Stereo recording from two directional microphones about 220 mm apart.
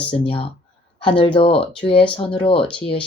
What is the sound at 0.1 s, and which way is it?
Speech, 25° left (ahead or behind).